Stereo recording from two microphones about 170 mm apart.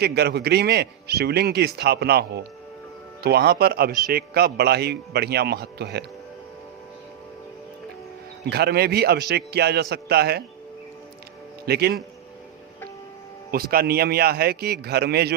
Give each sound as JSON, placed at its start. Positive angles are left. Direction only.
{"t": 0.0, "sound": "a man's voice", "side_deg": -70}
{"t": 8.4, "sound": "a man's voice", "side_deg": -70}
{"t": 11.6, "sound": "a man's voice", "side_deg": -70}
{"t": 13.5, "sound": "a man's voice", "side_deg": -60}